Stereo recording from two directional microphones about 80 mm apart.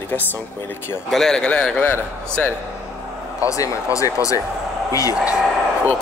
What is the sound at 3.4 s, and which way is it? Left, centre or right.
Speech, left.